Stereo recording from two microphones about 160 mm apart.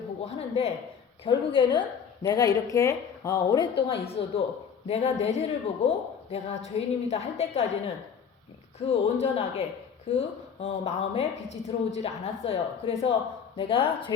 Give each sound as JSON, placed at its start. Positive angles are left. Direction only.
{"t": 0.3, "sound": "a sound", "side_deg": 40}
{"t": 1.2, "sound": "a woman's voice", "side_deg": 35}
{"t": 3.6, "sound": "a woman's voice", "side_deg": 30}
{"t": 8.9, "sound": "a woman's voice", "side_deg": 40}